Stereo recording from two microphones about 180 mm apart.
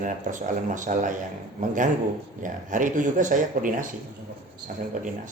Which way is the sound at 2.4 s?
45° right (ahead or behind).